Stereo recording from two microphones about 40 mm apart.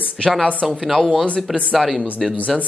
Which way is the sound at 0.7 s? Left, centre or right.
Centre.